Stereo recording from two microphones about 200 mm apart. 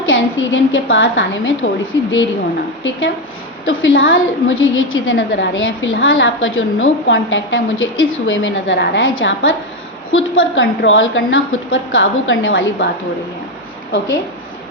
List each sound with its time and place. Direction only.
0.1 s a woman's voice: 75° left (ahead or behind)
3.7 s a woman's voice: 75° left (ahead or behind)